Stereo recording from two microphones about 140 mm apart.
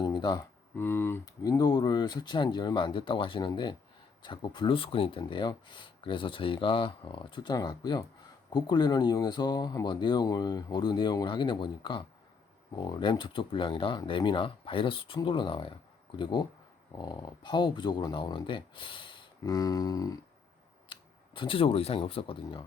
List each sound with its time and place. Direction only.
0.0 s a sound: 30° left (ahead or behind)
0.8 s speech: 15° left (ahead or behind)
20.9 s speech: 40° left (ahead or behind)